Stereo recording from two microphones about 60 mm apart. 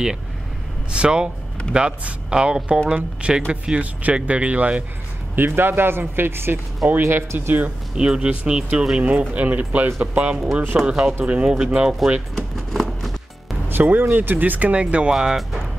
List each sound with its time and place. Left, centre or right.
0.9 s speech: centre
5.3 s speech: right
7.9 s speech: centre
10.9 s speech: centre
12.4 s keys jangling: centre
13.7 s speech: right
15.1 s speech: centre